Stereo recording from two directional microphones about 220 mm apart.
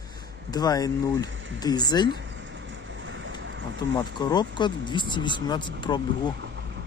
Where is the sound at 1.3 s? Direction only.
60° right (ahead or behind).